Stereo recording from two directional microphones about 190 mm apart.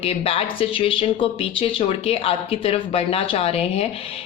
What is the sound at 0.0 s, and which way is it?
A woman's voice, 30° left (ahead or behind).